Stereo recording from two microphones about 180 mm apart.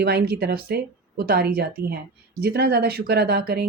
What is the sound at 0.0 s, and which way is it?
Speech, 65° right (ahead or behind).